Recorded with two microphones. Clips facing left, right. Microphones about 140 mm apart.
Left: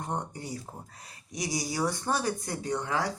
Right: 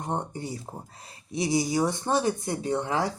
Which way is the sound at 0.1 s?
25° right (ahead or behind).